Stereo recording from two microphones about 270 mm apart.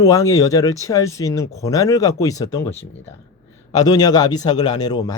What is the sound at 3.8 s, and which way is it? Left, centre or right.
Speech, centre.